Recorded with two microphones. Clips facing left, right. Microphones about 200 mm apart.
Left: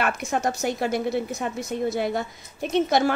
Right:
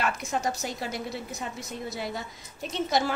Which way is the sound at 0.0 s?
60° left (ahead or behind).